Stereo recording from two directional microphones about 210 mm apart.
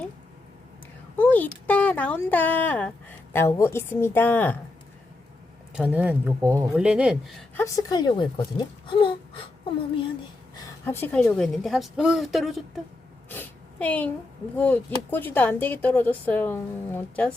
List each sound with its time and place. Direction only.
1.1 s a sound: 10° left (ahead or behind)
1.6 s a woman's voice: 5° left (ahead or behind)
5.7 s a woman's voice: 5° right (ahead or behind)
7.5 s speech: 15° left (ahead or behind)
10.6 s a woman's voice: 10° left (ahead or behind)
13.3 s a sound: 10° left (ahead or behind)
14.5 s a woman's voice: 10° left (ahead or behind)